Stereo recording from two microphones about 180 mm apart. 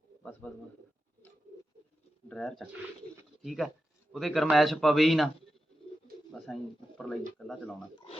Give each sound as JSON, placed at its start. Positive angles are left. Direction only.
{"t": 2.3, "sound": "a man's voice", "side_deg": 5}
{"t": 6.4, "sound": "a man's voice", "side_deg": 5}